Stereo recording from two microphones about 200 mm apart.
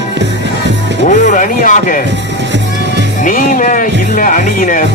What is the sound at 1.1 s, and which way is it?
Speech, 40° left (ahead or behind).